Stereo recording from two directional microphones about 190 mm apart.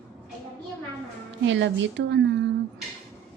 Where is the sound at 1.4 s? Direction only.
75° right (ahead or behind).